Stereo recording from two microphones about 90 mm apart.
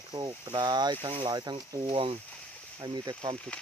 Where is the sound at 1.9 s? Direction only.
90° right.